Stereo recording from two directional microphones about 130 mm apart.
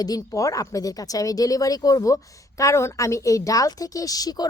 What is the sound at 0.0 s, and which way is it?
A woman's voice, 25° left (ahead or behind).